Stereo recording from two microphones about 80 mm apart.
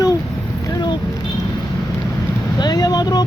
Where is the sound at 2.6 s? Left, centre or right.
Left.